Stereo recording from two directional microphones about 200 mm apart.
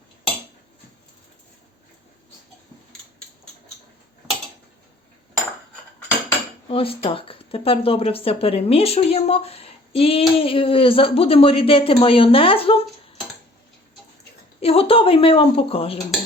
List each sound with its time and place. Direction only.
6.7 s speech: 25° left (ahead or behind)
14.6 s speech: 30° left (ahead or behind)